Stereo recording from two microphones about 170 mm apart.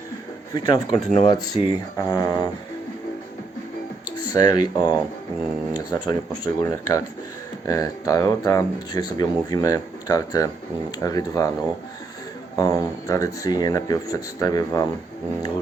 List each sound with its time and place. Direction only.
0.5 s speech: 25° left (ahead or behind)
4.3 s speech: 25° left (ahead or behind)
12.5 s speech: 20° left (ahead or behind)